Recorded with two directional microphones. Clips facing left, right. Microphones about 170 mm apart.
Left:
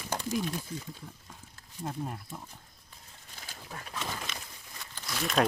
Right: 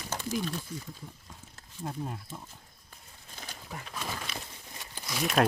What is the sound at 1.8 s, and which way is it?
Speech, centre (ahead or behind).